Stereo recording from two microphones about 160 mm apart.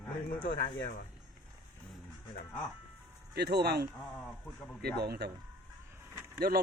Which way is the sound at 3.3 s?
90° right.